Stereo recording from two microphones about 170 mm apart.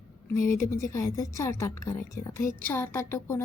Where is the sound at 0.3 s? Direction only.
15° left (ahead or behind).